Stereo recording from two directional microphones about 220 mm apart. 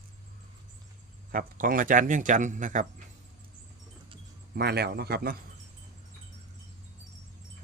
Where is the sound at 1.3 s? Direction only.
40° right (ahead or behind).